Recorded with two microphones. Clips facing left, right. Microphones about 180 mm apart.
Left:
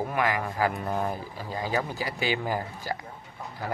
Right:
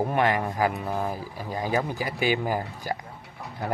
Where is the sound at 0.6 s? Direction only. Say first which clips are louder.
Left 2 dB; 5° right (ahead or behind).